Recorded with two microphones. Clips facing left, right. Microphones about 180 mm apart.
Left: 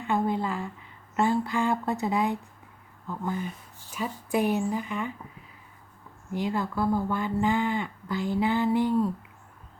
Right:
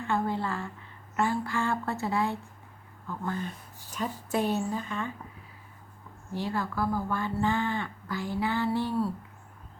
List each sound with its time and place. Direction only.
0.0 s a sound: 15° left (ahead or behind)
1.1 s speech: 20° left (ahead or behind)
6.3 s speech: 15° left (ahead or behind)